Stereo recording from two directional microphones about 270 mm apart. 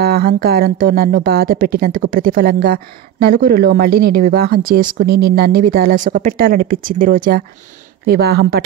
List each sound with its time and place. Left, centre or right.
0.0 s speech: right